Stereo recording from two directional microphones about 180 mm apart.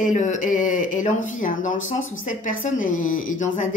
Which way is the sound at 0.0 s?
45° left (ahead or behind).